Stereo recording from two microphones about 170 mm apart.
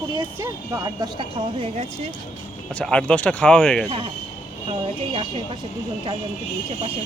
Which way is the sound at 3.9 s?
30° right (ahead or behind).